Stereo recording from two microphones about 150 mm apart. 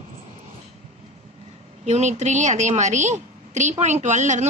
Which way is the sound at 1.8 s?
50° right (ahead or behind).